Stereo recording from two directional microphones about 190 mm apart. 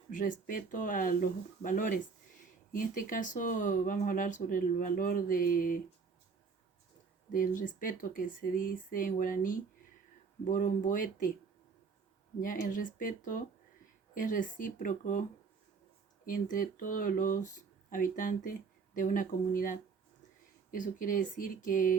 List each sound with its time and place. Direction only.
0.1 s speech: 45° left (ahead or behind)
7.3 s speech: 45° left (ahead or behind)
12.4 s speech: 45° left (ahead or behind)
16.2 s speech: 45° left (ahead or behind)